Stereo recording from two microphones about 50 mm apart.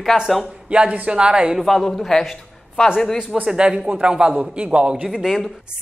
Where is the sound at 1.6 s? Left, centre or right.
Centre.